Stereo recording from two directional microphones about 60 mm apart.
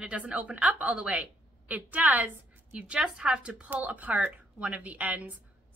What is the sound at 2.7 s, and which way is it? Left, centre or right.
A woman's voice, centre.